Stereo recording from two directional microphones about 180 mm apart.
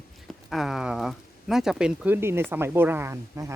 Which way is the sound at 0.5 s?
Centre (ahead or behind).